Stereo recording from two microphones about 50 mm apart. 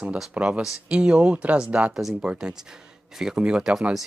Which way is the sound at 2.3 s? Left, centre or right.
Centre.